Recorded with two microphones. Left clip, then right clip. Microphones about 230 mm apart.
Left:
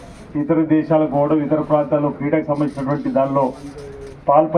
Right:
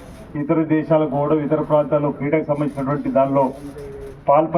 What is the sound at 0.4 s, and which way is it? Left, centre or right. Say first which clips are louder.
A man's voice: left 2 dB; left.